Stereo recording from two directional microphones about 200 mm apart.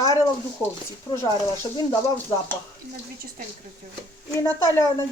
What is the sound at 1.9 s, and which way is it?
Speech, 10° left (ahead or behind).